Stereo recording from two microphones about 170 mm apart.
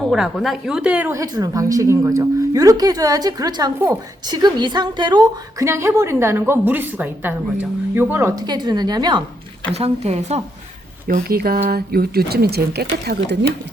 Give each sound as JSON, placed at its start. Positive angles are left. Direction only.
{"t": 0.0, "sound": "a woman's voice", "side_deg": 0}
{"t": 8.4, "sound": "a woman's voice", "side_deg": -25}
{"t": 9.7, "sound": "speech", "side_deg": -40}
{"t": 11.1, "sound": "speech", "side_deg": -60}